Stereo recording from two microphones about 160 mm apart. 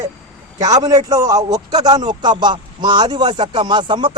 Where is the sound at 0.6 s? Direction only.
25° right (ahead or behind).